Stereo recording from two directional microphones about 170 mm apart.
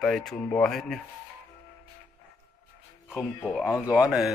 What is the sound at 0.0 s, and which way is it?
A man's voice, centre (ahead or behind).